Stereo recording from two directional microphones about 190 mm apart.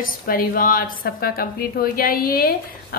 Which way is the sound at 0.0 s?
50° left (ahead or behind).